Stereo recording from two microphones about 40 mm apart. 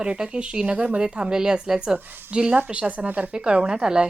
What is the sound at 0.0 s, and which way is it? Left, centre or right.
Speech, right.